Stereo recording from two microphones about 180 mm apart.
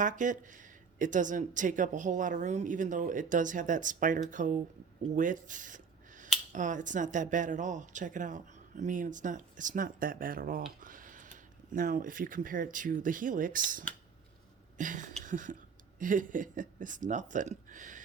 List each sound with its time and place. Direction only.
0.0 s speech: 45° right (ahead or behind)
5.1 s a sound: 45° right (ahead or behind)
6.5 s speech: 45° right (ahead or behind)